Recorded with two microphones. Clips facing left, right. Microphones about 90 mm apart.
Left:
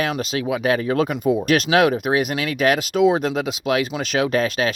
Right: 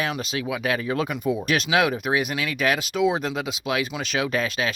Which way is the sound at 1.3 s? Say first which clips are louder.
Left 5 dB; 50° left (ahead or behind).